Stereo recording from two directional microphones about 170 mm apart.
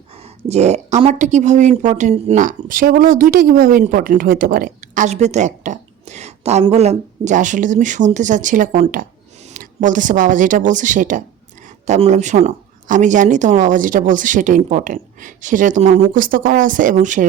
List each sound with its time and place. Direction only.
0.1 s a woman's voice: 40° right (ahead or behind)